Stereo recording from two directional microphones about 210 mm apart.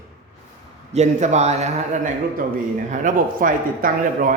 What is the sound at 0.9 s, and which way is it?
Speech, 35° right (ahead or behind).